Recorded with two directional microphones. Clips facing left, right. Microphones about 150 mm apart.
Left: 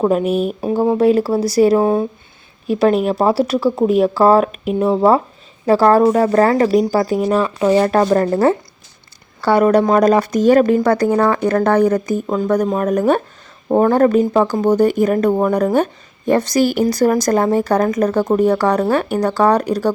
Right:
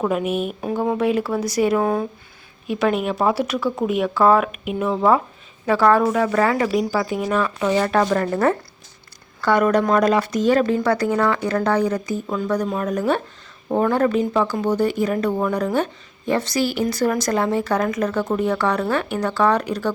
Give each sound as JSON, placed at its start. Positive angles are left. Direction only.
{"t": 0.0, "sound": "speech", "side_deg": 35}
{"t": 11.3, "sound": "speech", "side_deg": 50}